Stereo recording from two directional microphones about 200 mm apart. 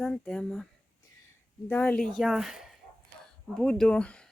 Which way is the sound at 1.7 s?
10° left (ahead or behind).